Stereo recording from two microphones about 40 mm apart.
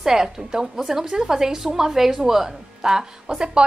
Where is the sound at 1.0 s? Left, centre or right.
Right.